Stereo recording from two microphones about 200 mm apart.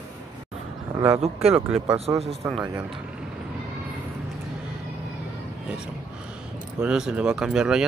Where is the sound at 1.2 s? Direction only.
30° right (ahead or behind).